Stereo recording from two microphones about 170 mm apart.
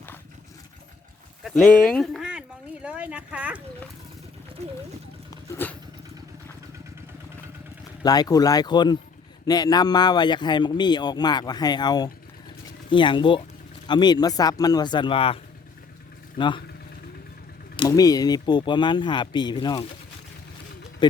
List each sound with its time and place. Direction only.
1.5 s speech: 5° left (ahead or behind)
2.8 s a sound: 5° right (ahead or behind)
4.6 s speech: 40° right (ahead or behind)
5.3 s dog: 15° left (ahead or behind)
8.0 s speech: 25° left (ahead or behind)
17.7 s speech: 20° left (ahead or behind)
21.0 s speech: 25° left (ahead or behind)